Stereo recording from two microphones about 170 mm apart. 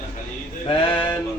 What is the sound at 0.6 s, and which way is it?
Speech, 30° left (ahead or behind).